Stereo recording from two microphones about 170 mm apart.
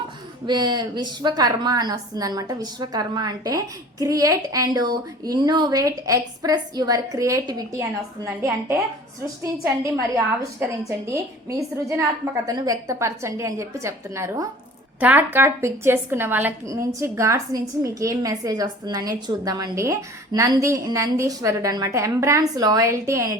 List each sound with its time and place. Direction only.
0.4 s a woman's voice: 25° right (ahead or behind)